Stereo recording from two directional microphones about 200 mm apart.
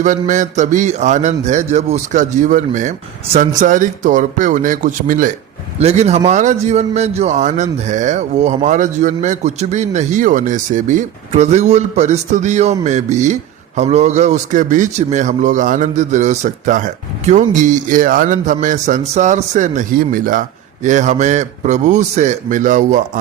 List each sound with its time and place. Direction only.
0.0 s a man's voice: 35° right (ahead or behind)